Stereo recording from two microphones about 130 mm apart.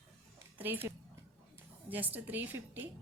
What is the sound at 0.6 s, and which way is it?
A woman's voice, 15° right (ahead or behind).